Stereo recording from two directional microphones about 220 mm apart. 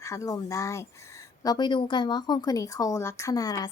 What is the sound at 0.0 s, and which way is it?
Speech, 15° left (ahead or behind).